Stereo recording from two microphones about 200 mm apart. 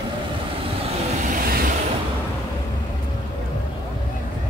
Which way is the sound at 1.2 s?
45° right (ahead or behind).